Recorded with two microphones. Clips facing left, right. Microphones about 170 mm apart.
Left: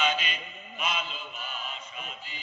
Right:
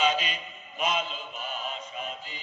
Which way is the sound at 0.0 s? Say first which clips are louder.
Right 3 dB; 35° right (ahead or behind).